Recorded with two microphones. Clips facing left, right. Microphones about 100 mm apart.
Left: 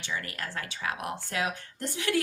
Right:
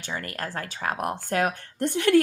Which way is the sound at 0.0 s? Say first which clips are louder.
Right 3 dB; 45° right (ahead or behind).